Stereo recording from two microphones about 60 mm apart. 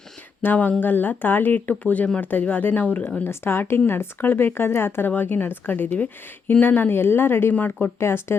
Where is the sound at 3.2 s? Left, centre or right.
Left.